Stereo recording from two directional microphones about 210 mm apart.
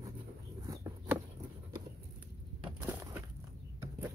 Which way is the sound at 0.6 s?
15° right (ahead or behind).